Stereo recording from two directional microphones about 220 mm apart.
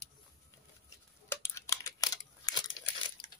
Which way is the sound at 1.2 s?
15° left (ahead or behind).